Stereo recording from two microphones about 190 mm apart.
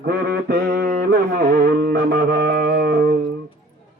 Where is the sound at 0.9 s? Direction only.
50° right (ahead or behind).